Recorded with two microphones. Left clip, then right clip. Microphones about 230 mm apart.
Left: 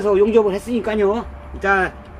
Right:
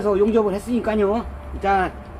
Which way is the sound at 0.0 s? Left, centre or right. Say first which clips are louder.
Left 4 dB; centre.